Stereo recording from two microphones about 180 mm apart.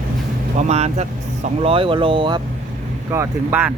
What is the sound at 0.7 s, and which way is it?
Speech, 35° right (ahead or behind).